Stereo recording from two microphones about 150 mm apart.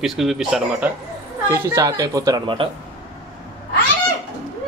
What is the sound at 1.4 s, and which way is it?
A child's voice, 20° right (ahead or behind).